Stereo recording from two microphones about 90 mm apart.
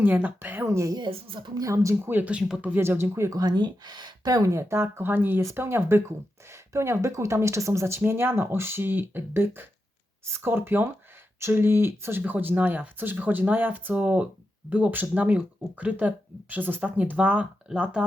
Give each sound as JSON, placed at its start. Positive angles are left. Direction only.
{"t": 0.0, "sound": "speech", "side_deg": -20}
{"t": 0.7, "sound": "speech", "side_deg": -35}
{"t": 0.9, "sound": "a woman's voice", "side_deg": -70}
{"t": 1.6, "sound": "speech", "side_deg": -35}
{"t": 2.0, "sound": "speech", "side_deg": -20}